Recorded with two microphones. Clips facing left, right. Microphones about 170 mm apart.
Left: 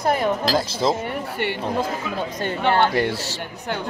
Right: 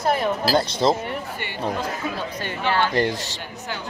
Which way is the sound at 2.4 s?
50° left (ahead or behind).